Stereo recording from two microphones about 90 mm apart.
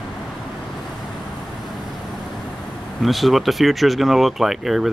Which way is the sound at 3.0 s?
Centre (ahead or behind).